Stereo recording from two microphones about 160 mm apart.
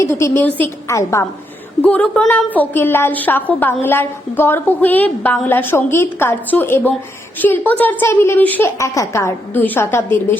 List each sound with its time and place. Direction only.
0.0 s a woman's voice: 20° left (ahead or behind)
1.8 s a woman's voice: 5° left (ahead or behind)